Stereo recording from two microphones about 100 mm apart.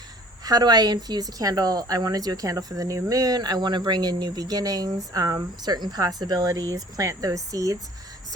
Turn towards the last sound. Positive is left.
turn(degrees=-35)  # may be behind; listen again after turning